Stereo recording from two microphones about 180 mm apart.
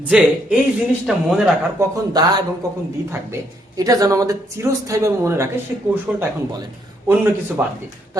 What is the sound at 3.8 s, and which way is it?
A man's voice, 20° right (ahead or behind).